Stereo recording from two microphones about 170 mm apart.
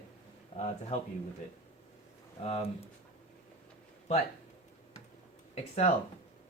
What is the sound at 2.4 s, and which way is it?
Speech, 35° left (ahead or behind).